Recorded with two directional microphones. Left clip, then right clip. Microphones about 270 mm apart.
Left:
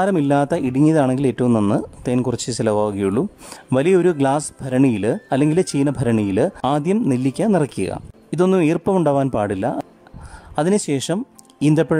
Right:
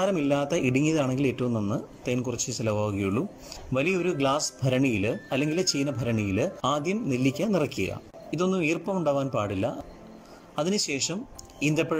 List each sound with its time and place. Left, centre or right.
0.0 s speech: centre
2.0 s speech: centre